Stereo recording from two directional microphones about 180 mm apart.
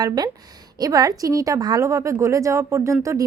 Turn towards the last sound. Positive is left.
turn(degrees=-15)  # may be behind; listen again after turning